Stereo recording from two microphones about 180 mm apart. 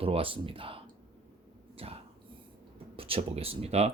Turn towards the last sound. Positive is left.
turn(degrees=-35)  # may be behind; listen again after turning